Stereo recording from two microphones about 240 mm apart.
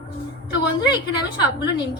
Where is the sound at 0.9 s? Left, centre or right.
Centre.